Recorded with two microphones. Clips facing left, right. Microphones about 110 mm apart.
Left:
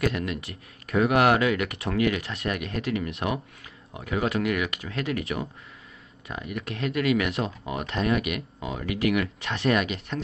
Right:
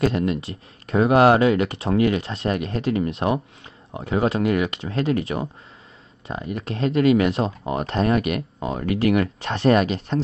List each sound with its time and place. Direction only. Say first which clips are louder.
0.0 s speech: right 6 dB; 30° right (ahead or behind)